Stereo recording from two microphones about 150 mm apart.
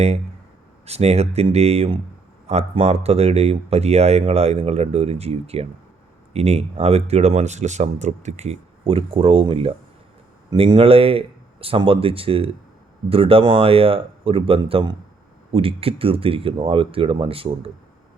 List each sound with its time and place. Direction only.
0.9 s speech: 45° right (ahead or behind)